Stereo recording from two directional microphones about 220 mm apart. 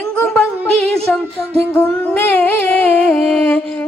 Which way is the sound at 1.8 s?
5° left (ahead or behind).